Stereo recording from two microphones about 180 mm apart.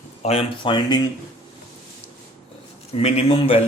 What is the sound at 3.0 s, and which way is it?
Speech, 35° left (ahead or behind).